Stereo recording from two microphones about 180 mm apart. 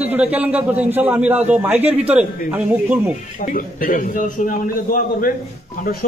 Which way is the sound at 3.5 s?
50° left (ahead or behind).